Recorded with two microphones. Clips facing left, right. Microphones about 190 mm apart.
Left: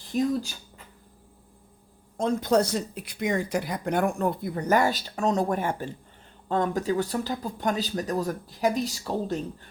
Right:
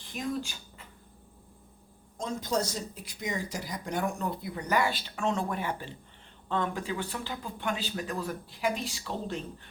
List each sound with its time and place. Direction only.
0.1 s speech: 40° left (ahead or behind)
2.1 s speech: 60° left (ahead or behind); by 9.4 s 40° left (ahead or behind)